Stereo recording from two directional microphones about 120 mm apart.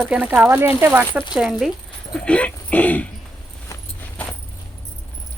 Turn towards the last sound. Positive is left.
turn(degrees=10)  # may be behind; listen again after turning